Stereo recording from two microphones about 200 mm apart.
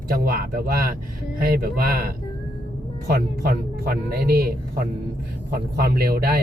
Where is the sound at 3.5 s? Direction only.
50° right (ahead or behind).